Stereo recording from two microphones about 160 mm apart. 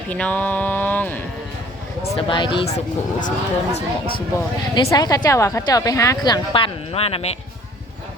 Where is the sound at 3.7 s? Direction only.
35° left (ahead or behind).